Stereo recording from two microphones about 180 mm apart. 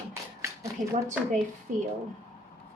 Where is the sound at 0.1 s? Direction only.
15° right (ahead or behind).